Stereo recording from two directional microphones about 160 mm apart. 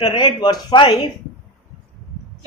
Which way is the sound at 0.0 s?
25° left (ahead or behind).